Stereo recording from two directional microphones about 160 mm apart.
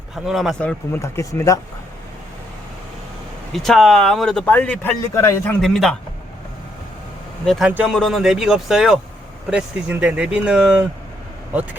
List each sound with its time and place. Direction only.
0.3 s speech: centre (ahead or behind)
0.9 s speech: 15° left (ahead or behind)
3.5 s speech: centre (ahead or behind); by 5.5 s 20° left (ahead or behind)
5.6 s speech: 5° left (ahead or behind)
7.4 s speech: centre (ahead or behind)
7.7 s speech: 10° right (ahead or behind)
7.9 s speech: centre (ahead or behind)